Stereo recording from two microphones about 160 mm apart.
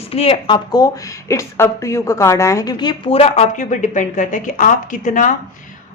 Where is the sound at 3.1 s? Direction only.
40° left (ahead or behind).